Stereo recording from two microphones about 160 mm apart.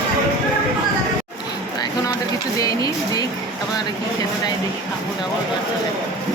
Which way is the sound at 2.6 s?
25° left (ahead or behind).